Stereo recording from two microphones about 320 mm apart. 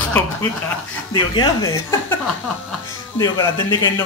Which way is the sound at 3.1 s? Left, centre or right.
Centre.